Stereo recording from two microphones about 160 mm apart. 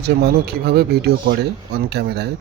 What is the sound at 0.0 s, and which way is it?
Speech, 85° right.